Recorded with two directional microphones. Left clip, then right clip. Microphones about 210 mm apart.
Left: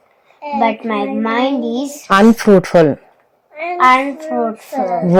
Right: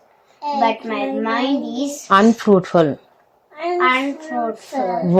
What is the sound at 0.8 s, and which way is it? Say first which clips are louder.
Speech: left 3 dB; 35° left (ahead or behind).